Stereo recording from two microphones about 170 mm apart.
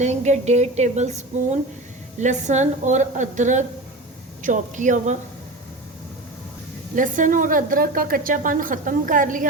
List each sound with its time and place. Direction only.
0.0 s a woman's voice: 40° right (ahead or behind)
6.9 s a woman's voice: 50° right (ahead or behind)